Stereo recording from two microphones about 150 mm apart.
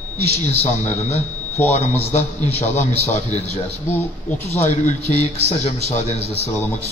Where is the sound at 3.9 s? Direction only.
15° left (ahead or behind).